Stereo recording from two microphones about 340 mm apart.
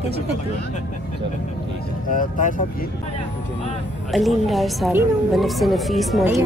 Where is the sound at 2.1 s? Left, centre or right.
Left.